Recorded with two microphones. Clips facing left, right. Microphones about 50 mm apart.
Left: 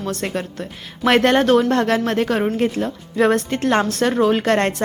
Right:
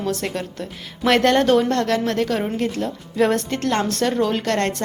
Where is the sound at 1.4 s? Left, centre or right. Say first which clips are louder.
Left 2 dB; centre.